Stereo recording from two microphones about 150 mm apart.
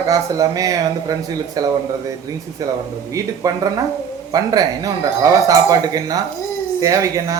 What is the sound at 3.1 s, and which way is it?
A man's voice, 25° right (ahead or behind).